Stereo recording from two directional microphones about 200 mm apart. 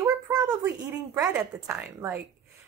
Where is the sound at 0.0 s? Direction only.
20° right (ahead or behind).